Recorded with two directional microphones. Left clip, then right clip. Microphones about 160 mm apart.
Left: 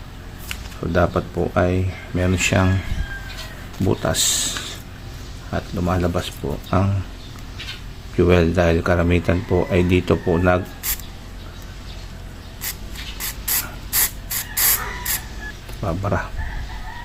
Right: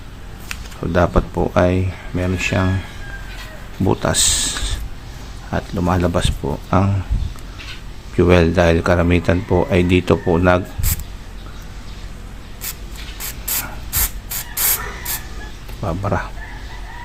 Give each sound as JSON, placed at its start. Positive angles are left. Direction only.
{"t": 0.8, "sound": "speech", "side_deg": -15}
{"t": 2.1, "sound": "speech", "side_deg": 5}
{"t": 3.8, "sound": "speech", "side_deg": -15}
{"t": 8.1, "sound": "speech", "side_deg": -15}
{"t": 13.1, "sound": "spray", "side_deg": -10}
{"t": 15.8, "sound": "speech", "side_deg": -5}